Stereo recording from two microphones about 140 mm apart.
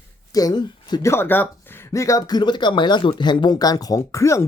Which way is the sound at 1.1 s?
15° left (ahead or behind).